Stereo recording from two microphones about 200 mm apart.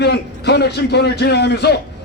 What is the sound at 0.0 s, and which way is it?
A man's voice, 55° left (ahead or behind).